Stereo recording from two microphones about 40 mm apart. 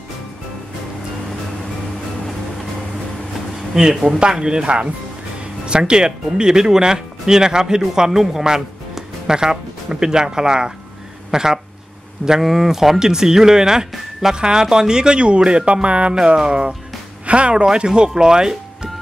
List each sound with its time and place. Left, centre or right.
3.8 s speech: centre